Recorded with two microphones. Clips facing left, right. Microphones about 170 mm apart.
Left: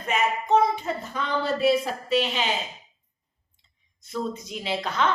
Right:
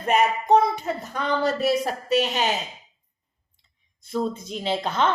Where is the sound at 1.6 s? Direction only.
40° right (ahead or behind).